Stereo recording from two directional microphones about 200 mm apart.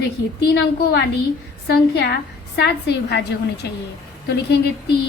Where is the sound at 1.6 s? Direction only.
55° left (ahead or behind).